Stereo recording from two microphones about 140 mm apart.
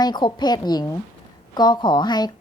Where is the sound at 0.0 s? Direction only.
30° left (ahead or behind).